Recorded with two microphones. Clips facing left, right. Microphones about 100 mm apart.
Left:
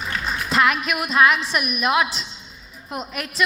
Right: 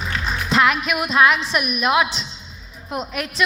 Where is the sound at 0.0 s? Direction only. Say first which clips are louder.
Right 1 dB; 5° left (ahead or behind).